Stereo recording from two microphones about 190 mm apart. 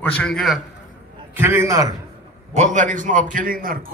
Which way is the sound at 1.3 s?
10° right (ahead or behind).